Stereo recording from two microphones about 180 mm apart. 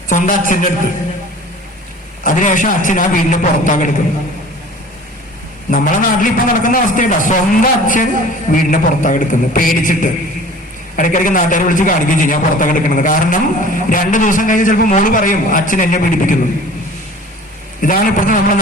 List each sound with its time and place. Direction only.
0.1 s a man's voice: 45° left (ahead or behind)
2.2 s a man's voice: 45° left (ahead or behind)
5.7 s a man's voice: 50° left (ahead or behind)
17.7 s a man's voice: 50° left (ahead or behind)